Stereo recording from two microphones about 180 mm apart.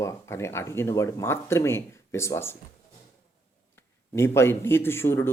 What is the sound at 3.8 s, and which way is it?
Speech, 15° left (ahead or behind).